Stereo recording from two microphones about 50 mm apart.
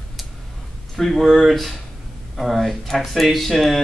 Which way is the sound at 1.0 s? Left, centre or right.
Centre.